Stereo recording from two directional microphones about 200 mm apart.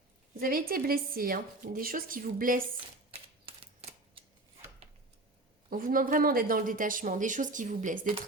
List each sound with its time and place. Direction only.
0.3 s speech: 45° right (ahead or behind)
3.1 s typewriter: 30° right (ahead or behind)
5.7 s speech: 45° right (ahead or behind)